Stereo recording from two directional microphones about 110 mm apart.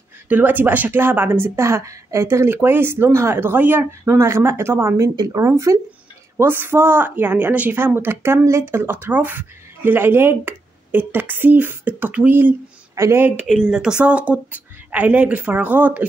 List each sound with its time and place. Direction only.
0.3 s a woman's voice: 15° right (ahead or behind)
13.5 s a woman's voice: 5° right (ahead or behind)